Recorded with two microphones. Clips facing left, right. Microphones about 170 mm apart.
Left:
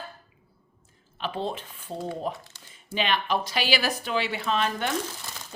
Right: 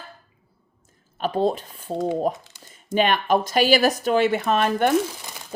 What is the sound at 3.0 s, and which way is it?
Speech, 50° right (ahead or behind).